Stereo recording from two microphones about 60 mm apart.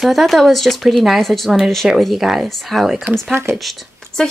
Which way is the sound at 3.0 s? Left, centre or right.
Right.